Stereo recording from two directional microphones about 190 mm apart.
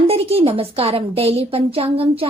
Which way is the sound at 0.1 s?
30° right (ahead or behind).